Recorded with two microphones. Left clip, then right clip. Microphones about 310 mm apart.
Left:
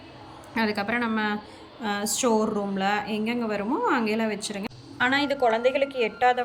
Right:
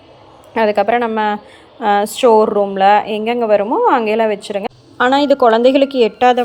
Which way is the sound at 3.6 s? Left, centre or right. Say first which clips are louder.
Right 12 dB; right.